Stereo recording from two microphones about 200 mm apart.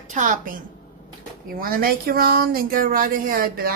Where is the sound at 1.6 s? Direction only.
45° right (ahead or behind).